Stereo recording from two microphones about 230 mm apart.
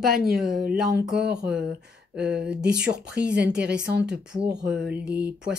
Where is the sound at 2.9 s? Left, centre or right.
Right.